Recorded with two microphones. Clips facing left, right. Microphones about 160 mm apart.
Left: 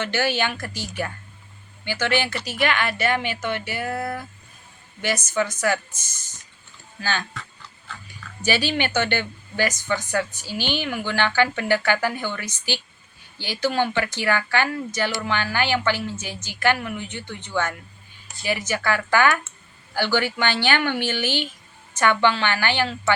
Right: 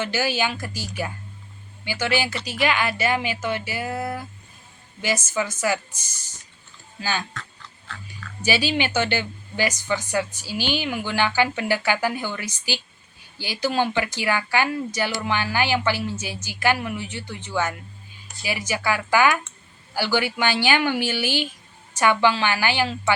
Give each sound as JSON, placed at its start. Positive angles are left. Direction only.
{"t": 0.3, "sound": "speech", "side_deg": -10}
{"t": 1.8, "sound": "speech", "side_deg": -10}
{"t": 3.8, "sound": "speech", "side_deg": -20}
{"t": 5.1, "sound": "speech", "side_deg": -5}
{"t": 8.4, "sound": "speech", "side_deg": -10}